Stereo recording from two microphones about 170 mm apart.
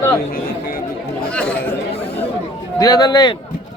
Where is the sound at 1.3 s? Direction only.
5° left (ahead or behind).